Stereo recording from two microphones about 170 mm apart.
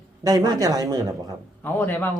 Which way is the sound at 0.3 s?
20° right (ahead or behind).